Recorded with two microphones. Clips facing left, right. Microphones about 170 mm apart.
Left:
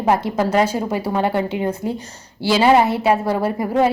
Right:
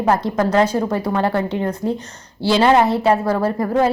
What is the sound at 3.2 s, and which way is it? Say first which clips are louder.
Speech: right 1 dB; 15° left (ahead or behind).